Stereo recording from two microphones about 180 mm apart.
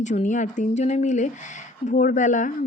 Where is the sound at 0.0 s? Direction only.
45° left (ahead or behind).